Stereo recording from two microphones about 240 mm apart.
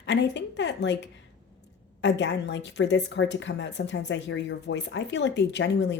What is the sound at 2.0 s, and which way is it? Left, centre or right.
Speech, left.